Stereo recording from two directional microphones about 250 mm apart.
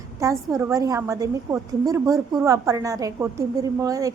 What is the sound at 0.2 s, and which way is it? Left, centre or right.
A woman's voice, centre.